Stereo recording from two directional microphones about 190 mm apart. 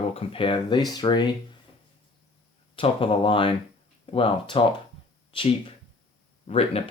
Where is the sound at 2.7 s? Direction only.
30° left (ahead or behind).